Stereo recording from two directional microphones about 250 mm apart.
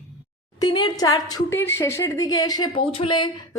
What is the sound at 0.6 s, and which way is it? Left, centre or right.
A woman's voice, centre.